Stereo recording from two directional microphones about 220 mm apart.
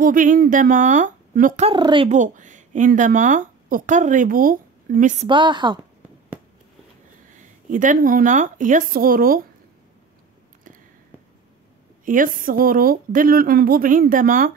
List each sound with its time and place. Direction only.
0.0 s speech: 40° right (ahead or behind)
1.7 s a woman's voice: 20° right (ahead or behind)
2.0 s speech: 35° right (ahead or behind)
5.3 s a woman's voice: 20° right (ahead or behind)
7.2 s speech: 35° right (ahead or behind)
12.0 s speech: 40° right (ahead or behind)